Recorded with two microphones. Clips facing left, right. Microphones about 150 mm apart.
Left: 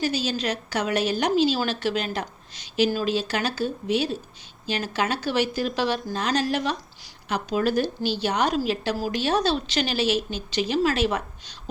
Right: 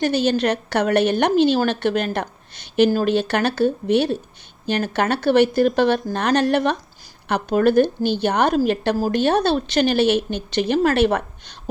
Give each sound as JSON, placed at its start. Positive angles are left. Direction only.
{"t": 0.0, "sound": "a woman's voice", "side_deg": -60}